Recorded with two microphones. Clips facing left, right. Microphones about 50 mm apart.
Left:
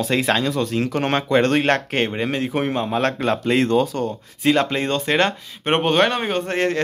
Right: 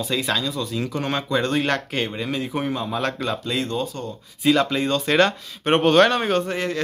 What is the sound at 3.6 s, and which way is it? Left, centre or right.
Speech, left.